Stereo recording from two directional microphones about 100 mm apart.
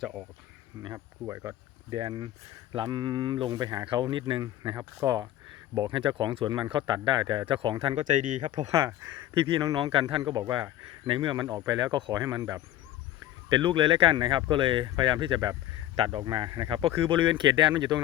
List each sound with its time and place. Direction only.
0.0 s speech: 5° right (ahead or behind)
0.9 s speech: 25° right (ahead or behind)
1.9 s speech: 45° right (ahead or behind)
4.8 s speech: 35° right (ahead or behind)
6.0 s speech: 50° right (ahead or behind)
8.7 s speech: 25° right (ahead or behind)
9.3 s speech: 55° right (ahead or behind)